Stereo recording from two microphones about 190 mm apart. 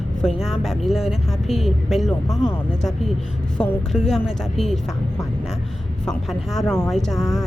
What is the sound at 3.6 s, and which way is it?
A woman's voice, 5° left (ahead or behind).